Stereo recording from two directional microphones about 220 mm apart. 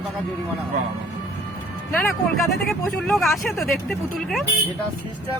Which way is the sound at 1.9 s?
5° left (ahead or behind).